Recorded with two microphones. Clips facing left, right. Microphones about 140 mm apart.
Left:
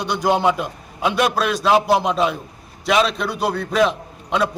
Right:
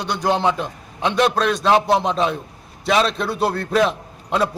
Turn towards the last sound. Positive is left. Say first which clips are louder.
# even
turn(degrees=0)  # may be behind; listen again after turning